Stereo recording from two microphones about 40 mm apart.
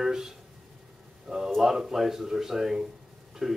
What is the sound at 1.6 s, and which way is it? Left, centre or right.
Speech, centre.